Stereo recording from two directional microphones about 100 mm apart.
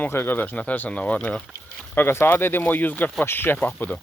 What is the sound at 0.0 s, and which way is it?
Speech, 20° left (ahead or behind).